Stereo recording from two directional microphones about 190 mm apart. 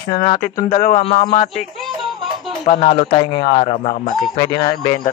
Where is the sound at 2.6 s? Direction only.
35° left (ahead or behind).